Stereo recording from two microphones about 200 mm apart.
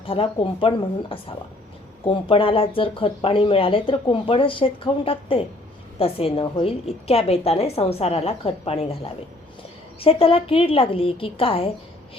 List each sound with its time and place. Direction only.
0.0 s speech: 25° left (ahead or behind)